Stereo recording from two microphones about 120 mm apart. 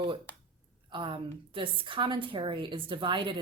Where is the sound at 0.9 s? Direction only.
45° right (ahead or behind).